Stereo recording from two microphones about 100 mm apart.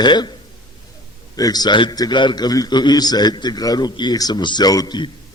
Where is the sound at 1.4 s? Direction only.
40° left (ahead or behind).